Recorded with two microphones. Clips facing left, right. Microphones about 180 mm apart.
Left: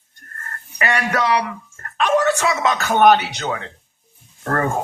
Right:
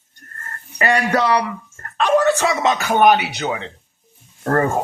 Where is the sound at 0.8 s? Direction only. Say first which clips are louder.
Right 3 dB; 35° right (ahead or behind).